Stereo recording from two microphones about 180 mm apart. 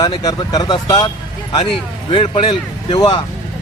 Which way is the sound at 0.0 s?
20° left (ahead or behind).